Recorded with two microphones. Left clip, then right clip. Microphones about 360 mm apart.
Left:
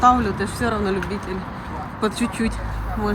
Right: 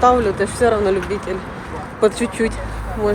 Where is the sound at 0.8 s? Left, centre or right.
Centre.